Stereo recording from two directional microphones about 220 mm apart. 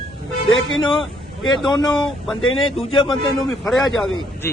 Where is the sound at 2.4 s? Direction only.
70° left (ahead or behind).